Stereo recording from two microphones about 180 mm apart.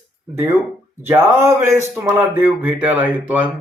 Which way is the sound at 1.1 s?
15° right (ahead or behind).